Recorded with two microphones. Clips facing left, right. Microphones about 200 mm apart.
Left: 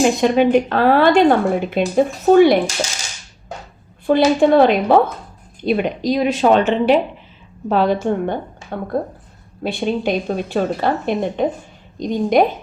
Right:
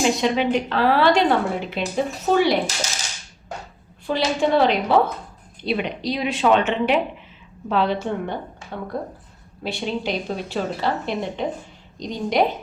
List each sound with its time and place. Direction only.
0.0 s a woman's voice: 50° left (ahead or behind)
4.0 s a woman's voice: 55° left (ahead or behind)